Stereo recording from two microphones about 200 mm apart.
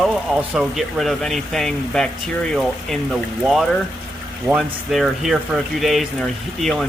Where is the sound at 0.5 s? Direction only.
Centre (ahead or behind).